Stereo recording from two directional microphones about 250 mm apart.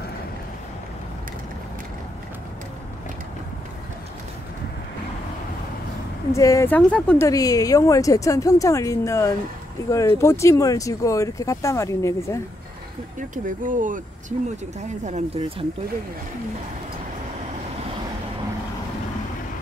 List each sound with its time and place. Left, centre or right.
6.3 s speech: centre
13.3 s speech: right